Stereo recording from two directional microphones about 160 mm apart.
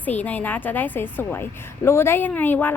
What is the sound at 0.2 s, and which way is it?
A woman's voice, 10° left (ahead or behind).